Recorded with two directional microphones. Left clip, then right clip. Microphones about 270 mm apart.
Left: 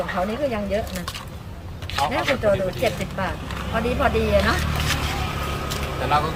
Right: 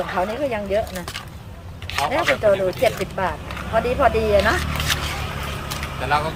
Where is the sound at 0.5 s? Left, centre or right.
Centre.